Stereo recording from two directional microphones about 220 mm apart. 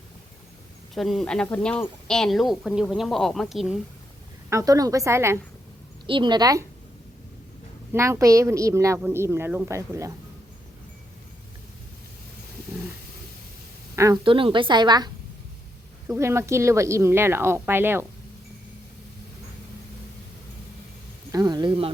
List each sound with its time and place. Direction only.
0.9 s speech: centre (ahead or behind)
4.4 s a woman's voice: 15° right (ahead or behind)
7.9 s a woman's voice: 10° right (ahead or behind)
13.9 s a woman's voice: 15° right (ahead or behind)
21.3 s a woman's voice: 20° right (ahead or behind)